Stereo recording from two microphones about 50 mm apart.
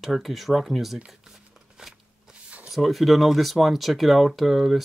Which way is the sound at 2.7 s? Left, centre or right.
Centre.